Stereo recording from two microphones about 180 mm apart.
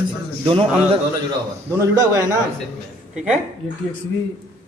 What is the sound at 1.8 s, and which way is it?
Speech, 20° right (ahead or behind).